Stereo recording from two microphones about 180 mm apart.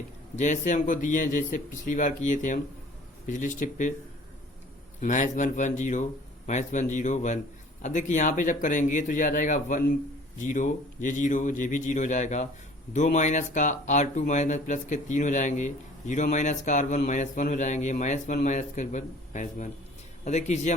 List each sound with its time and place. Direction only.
0.3 s speech: 40° left (ahead or behind)
4.9 s speech: 45° left (ahead or behind)